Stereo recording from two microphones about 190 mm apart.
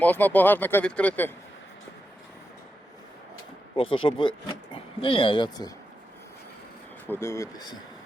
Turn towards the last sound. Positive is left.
turn(degrees=20)  # may be behind; listen again after turning